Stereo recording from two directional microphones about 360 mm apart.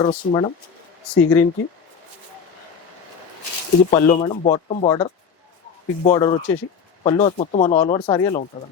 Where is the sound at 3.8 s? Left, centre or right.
Centre.